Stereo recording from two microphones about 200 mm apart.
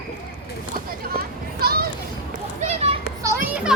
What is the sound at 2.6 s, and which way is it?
Children playing, 30° right (ahead or behind).